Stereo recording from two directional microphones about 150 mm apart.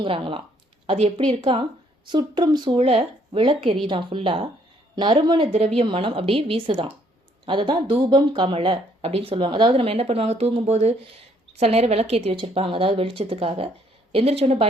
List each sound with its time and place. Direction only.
0.0 s a woman's voice: 35° right (ahead or behind)
2.0 s speech: 30° right (ahead or behind)
2.7 s speech: 45° right (ahead or behind)